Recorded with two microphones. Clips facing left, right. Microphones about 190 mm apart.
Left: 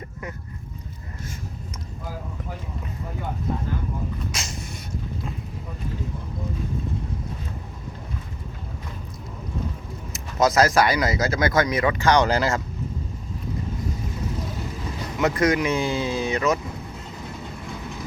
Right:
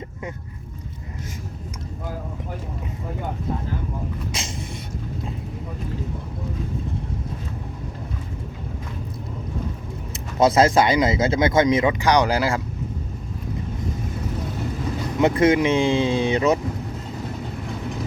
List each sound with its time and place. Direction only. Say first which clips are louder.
4.3 s a sound: right 2 dB; 30° right (ahead or behind)
10.4 s speech: right 2 dB; 25° right (ahead or behind); by 12.6 s 10° right (ahead or behind)
15.2 s speech: right 4 dB; 25° right (ahead or behind)